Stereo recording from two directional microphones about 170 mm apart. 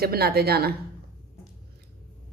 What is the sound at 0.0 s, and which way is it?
Speech, 65° right (ahead or behind).